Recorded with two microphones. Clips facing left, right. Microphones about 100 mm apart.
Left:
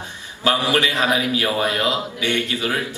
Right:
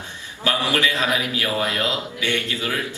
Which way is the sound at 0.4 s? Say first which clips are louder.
Left 3 dB; 25° left (ahead or behind).